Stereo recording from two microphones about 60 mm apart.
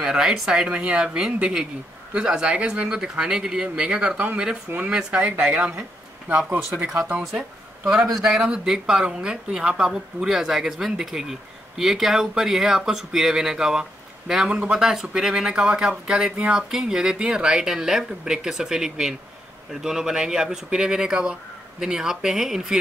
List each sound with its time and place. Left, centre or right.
0.0 s speech: centre
7.2 s speech: centre
16.7 s speech: centre